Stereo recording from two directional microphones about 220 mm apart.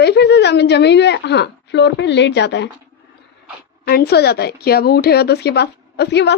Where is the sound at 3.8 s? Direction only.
45° left (ahead or behind).